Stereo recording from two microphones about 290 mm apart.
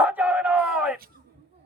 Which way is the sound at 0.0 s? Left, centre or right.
Centre.